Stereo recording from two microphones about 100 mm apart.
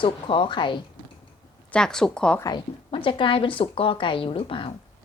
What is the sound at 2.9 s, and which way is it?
A woman's voice, 60° left (ahead or behind).